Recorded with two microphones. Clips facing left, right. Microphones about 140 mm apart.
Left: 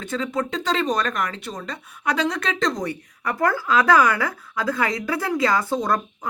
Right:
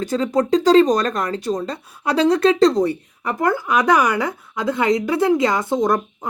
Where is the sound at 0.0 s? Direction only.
35° right (ahead or behind).